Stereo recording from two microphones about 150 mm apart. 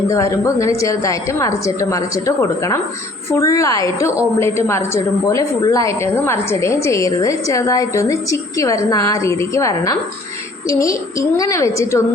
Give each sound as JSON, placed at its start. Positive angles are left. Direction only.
{"t": 0.1, "sound": "a woman's voice", "side_deg": 20}